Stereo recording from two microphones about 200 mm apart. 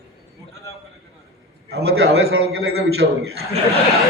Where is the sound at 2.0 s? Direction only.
90° right.